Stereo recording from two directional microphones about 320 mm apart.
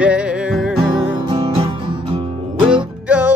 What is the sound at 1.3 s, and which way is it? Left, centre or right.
Music, centre.